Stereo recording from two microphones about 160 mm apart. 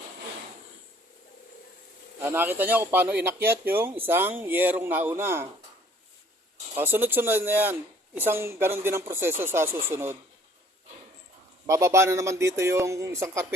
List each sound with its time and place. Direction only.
2.2 s speech: 15° right (ahead or behind)
6.7 s speech: 15° right (ahead or behind)
11.6 s speech: 20° right (ahead or behind)